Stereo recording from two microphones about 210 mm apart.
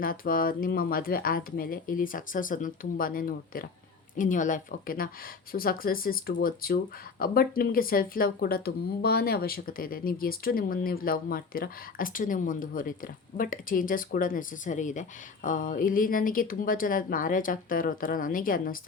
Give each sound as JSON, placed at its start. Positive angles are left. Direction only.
{"t": 0.0, "sound": "speech", "side_deg": 45}